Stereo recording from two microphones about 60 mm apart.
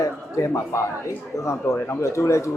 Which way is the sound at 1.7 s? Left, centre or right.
Left.